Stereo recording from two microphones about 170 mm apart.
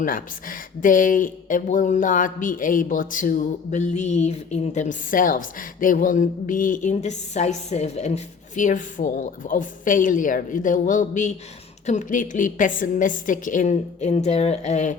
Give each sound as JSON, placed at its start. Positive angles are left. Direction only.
{"t": 0.0, "sound": "speech", "side_deg": 55}